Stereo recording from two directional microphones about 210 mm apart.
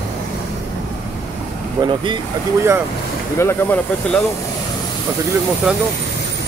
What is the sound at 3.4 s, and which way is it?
Speech, 10° left (ahead or behind).